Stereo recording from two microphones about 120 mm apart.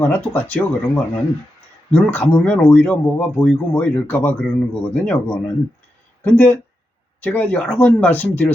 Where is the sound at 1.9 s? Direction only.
15° left (ahead or behind).